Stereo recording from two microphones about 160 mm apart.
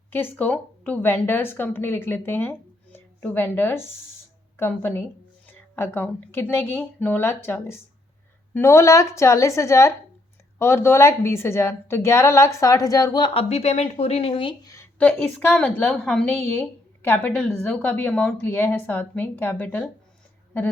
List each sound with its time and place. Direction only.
0.1 s a woman's voice: 10° left (ahead or behind); by 14.7 s 35° left (ahead or behind)
14.9 s a woman's voice: 10° left (ahead or behind)